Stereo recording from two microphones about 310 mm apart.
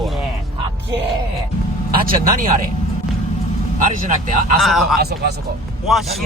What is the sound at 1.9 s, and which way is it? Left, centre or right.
Speech, right.